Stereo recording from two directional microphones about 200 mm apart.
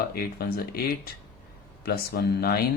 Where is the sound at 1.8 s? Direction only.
50° left (ahead or behind).